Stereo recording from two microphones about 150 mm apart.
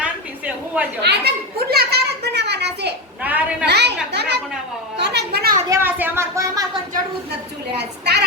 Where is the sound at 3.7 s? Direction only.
90° right.